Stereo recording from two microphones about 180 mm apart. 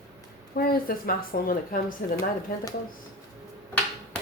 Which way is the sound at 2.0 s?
65° left (ahead or behind).